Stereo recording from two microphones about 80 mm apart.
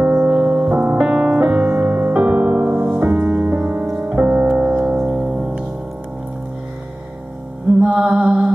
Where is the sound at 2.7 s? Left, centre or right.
Centre.